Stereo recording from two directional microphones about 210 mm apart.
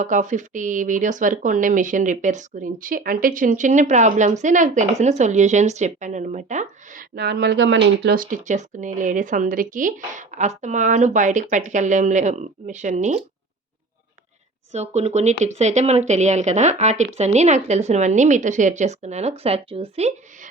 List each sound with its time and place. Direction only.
0.0 s speech: 35° right (ahead or behind)
14.7 s speech: 30° right (ahead or behind)